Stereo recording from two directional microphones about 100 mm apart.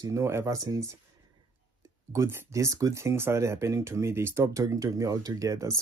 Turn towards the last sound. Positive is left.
turn(degrees=-35)  # may be behind; listen again after turning